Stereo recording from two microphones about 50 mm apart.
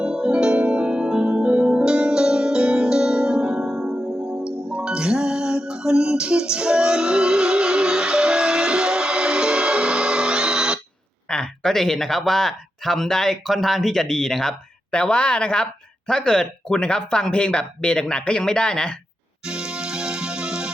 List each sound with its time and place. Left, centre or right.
0.0 s music: centre
11.3 s speech: centre
14.9 s a woman's voice: left
19.5 s music: centre